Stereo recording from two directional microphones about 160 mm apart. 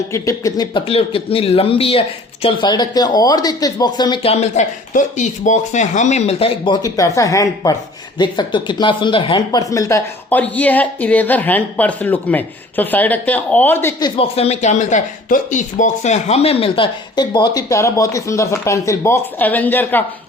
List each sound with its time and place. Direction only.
0.1 s speech: 20° left (ahead or behind); by 6.7 s 35° left (ahead or behind)
6.8 s speech: 20° left (ahead or behind)
14.0 s speech: 40° left (ahead or behind); by 20.1 s 10° left (ahead or behind)